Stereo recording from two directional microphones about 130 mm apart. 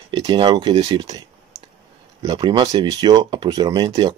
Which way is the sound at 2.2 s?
30° right (ahead or behind).